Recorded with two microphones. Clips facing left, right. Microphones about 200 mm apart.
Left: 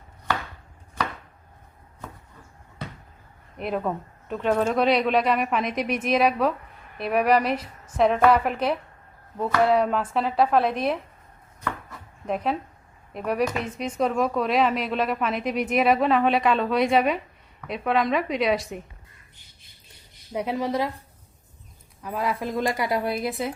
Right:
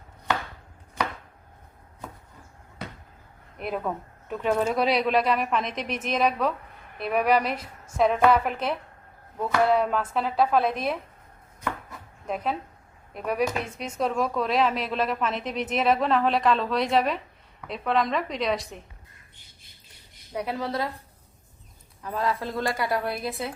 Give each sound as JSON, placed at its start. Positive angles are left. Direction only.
{"t": 3.6, "sound": "speech", "side_deg": 0}
{"t": 12.3, "sound": "speech", "side_deg": 0}
{"t": 20.3, "sound": "a woman's voice", "side_deg": 20}
{"t": 22.0, "sound": "a woman's voice", "side_deg": 10}